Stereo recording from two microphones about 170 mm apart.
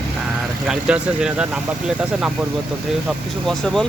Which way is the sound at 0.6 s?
5° right (ahead or behind).